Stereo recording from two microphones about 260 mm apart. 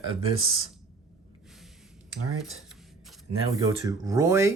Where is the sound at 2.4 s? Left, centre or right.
Centre.